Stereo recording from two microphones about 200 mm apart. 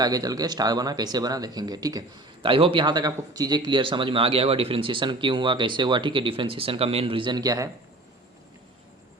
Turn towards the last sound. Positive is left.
turn(degrees=-20)  # may be behind; listen again after turning